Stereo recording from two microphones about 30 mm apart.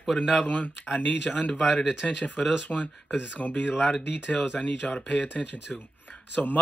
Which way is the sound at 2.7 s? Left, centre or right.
Left.